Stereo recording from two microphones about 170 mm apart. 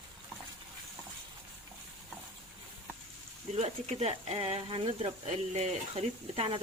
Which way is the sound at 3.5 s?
40° right (ahead or behind).